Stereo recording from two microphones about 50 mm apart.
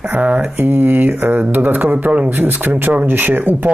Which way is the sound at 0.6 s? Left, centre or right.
Right.